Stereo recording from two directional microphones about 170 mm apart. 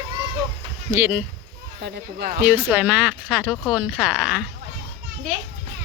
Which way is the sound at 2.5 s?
10° right (ahead or behind).